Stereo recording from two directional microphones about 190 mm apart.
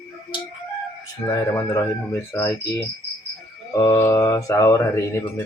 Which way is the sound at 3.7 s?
20° left (ahead or behind).